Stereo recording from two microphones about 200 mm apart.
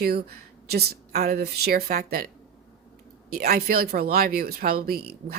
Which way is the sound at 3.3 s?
50° right (ahead or behind).